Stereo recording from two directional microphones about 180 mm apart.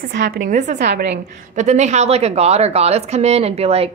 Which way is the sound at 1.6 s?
40° right (ahead or behind).